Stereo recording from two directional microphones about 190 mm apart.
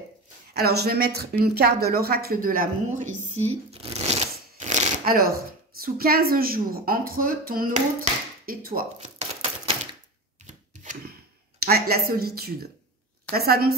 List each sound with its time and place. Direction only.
0.6 s a woman's voice: 55° right (ahead or behind)
3.4 s a woman's voice: 30° right (ahead or behind); by 8.8 s 50° right (ahead or behind)
8.9 s a sound: 30° right (ahead or behind)
11.6 s a woman's voice: 55° right (ahead or behind)